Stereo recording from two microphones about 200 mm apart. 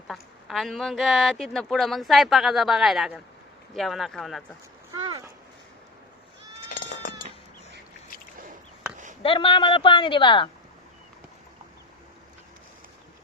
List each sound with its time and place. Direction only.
0.1 s speech: centre (ahead or behind)
4.9 s a sound: 15° right (ahead or behind)
9.2 s a man's voice: 25° left (ahead or behind)